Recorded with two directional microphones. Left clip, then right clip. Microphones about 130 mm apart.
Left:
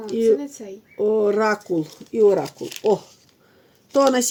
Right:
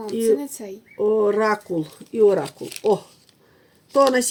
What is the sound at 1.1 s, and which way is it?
Speech, 35° left (ahead or behind).